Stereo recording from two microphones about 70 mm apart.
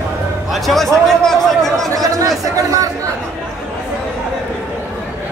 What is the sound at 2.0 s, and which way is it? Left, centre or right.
Speech, right.